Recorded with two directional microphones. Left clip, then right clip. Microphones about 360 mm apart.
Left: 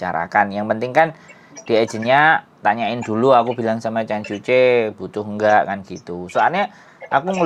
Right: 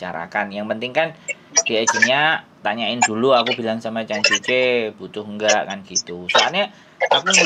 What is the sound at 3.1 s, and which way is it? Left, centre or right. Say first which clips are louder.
Speech: left 5 dB; left.